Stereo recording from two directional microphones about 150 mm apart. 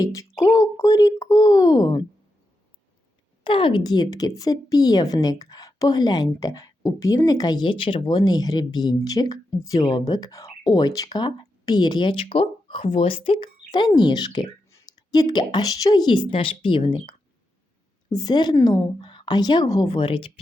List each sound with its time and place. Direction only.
0.0 s a woman's voice: 20° left (ahead or behind)
3.4 s a woman's voice: 30° left (ahead or behind)